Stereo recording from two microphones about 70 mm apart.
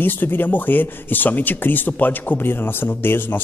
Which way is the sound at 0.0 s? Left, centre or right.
Left.